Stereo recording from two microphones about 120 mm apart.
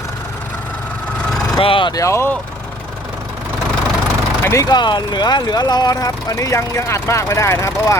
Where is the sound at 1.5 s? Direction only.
45° left (ahead or behind).